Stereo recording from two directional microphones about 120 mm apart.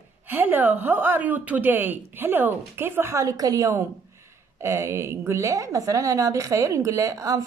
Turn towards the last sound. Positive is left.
turn(degrees=-30)  # may be behind; listen again after turning